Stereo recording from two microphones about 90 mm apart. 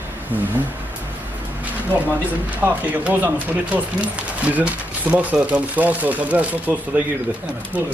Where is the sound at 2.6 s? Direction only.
20° right (ahead or behind).